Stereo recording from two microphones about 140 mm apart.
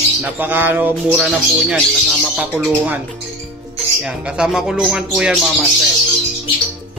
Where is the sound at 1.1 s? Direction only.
5° right (ahead or behind).